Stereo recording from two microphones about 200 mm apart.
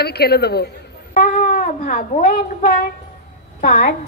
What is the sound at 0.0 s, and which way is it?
Speech, 55° left (ahead or behind).